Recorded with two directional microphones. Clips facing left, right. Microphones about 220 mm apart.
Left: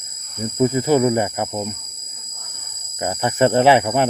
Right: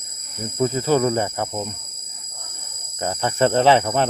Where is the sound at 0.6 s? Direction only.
15° left (ahead or behind).